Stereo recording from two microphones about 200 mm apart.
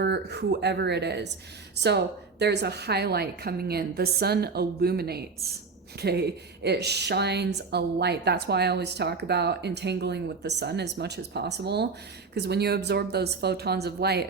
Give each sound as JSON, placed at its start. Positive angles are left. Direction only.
{"t": 0.0, "sound": "a woman's voice", "side_deg": -55}